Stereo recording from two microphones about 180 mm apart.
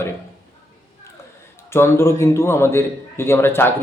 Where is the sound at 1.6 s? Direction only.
15° left (ahead or behind).